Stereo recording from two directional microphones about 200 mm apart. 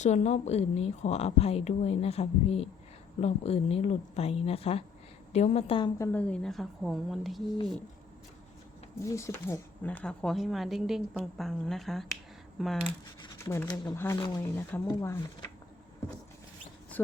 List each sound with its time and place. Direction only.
0.0 s a woman's voice: 35° left (ahead or behind)
6.0 s speech: 10° left (ahead or behind)
9.0 s speech: 15° left (ahead or behind)
13.2 s speech: 15° left (ahead or behind)